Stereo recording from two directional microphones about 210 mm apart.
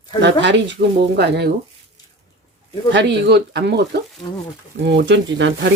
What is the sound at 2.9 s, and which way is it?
Speech, 55° right (ahead or behind).